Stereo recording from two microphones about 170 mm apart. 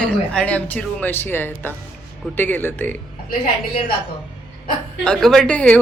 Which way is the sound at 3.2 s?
60° left (ahead or behind).